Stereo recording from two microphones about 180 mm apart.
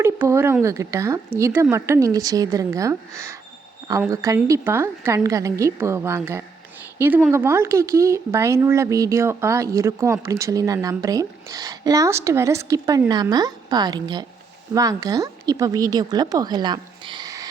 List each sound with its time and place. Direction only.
0.0 s speech: 15° right (ahead or behind)